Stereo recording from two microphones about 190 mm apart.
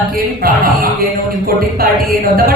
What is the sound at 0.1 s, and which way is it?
Speech, 50° right (ahead or behind).